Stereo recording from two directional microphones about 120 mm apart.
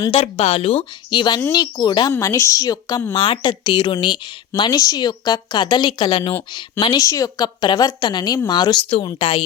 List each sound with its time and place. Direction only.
0.1 s speech: 50° left (ahead or behind)
1.1 s a woman's voice: 40° left (ahead or behind)
2.1 s a woman's voice: 25° left (ahead or behind); by 4.7 s 45° left (ahead or behind)
4.7 s a woman's voice: 30° left (ahead or behind)
7.0 s a woman's voice: 30° left (ahead or behind); by 9.4 s 45° left (ahead or behind)